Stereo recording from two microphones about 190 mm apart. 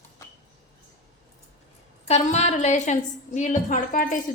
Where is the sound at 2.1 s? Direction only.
35° left (ahead or behind).